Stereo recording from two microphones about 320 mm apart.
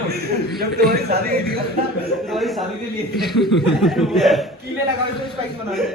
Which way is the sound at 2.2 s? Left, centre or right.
Centre.